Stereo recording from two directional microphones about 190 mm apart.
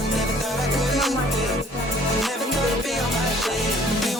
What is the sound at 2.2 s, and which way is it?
Music, centre (ahead or behind).